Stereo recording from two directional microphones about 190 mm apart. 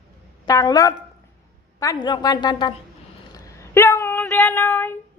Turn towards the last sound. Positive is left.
turn(degrees=10)  # may be behind; listen again after turning